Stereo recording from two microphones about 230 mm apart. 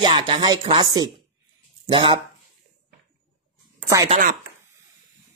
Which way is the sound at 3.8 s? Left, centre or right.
Centre.